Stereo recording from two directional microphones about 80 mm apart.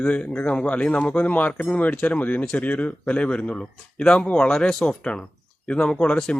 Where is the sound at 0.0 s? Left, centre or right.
Centre.